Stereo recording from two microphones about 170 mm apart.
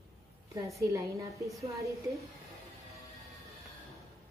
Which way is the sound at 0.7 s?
20° right (ahead or behind).